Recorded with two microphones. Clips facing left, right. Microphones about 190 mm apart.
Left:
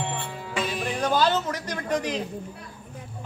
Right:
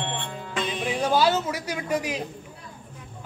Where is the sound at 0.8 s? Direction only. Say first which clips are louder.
Right 2 dB; 5° right (ahead or behind).